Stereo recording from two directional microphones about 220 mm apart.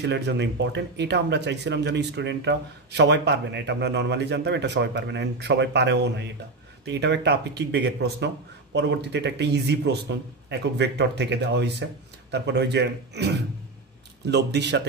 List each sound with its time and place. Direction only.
0.0 s speech: 50° right (ahead or behind)